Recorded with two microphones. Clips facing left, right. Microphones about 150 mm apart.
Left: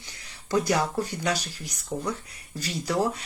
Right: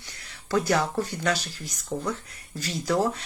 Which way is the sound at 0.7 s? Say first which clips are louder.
Right 1 dB; 10° left (ahead or behind).